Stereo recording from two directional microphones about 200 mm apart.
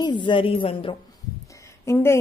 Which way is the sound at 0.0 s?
25° left (ahead or behind).